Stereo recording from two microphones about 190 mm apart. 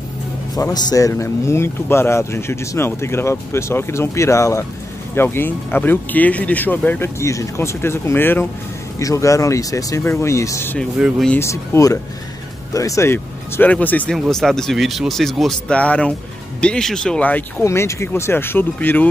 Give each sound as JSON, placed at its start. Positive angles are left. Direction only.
{"t": 0.6, "sound": "speech", "side_deg": 15}
{"t": 11.0, "sound": "speech", "side_deg": -5}
{"t": 11.2, "sound": "speech", "side_deg": 15}